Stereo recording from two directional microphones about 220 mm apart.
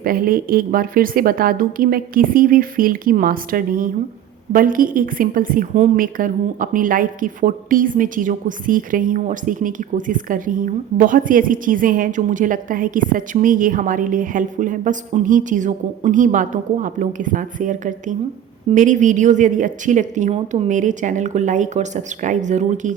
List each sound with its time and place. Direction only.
0.0 s a woman's voice: 40° right (ahead or behind)